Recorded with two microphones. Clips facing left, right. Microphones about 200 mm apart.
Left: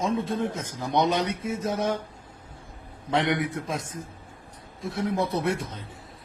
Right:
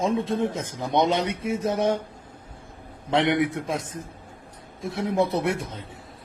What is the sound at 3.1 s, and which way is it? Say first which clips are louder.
Speech: right 3 dB; 25° right (ahead or behind).